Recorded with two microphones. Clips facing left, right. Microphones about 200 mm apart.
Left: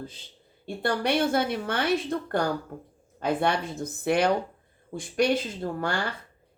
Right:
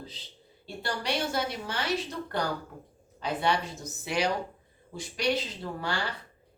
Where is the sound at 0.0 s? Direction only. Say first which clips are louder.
Left 5 dB; 50° left (ahead or behind).